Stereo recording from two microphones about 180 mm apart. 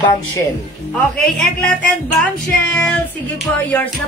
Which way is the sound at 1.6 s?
5° left (ahead or behind).